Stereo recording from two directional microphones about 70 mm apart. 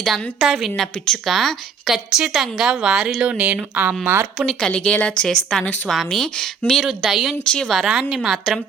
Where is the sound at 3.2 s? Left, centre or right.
Centre.